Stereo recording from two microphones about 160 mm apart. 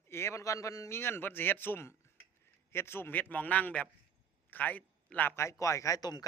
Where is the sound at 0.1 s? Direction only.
15° left (ahead or behind).